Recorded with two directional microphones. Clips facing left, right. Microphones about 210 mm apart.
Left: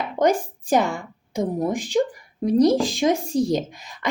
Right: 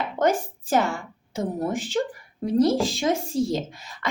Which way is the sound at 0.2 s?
15° left (ahead or behind).